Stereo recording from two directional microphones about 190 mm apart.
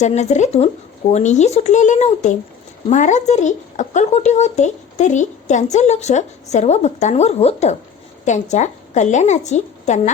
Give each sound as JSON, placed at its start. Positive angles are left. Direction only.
{"t": 0.0, "sound": "a woman's voice", "side_deg": 35}